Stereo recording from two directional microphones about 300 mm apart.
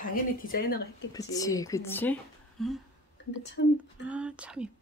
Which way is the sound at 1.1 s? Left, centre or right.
Centre.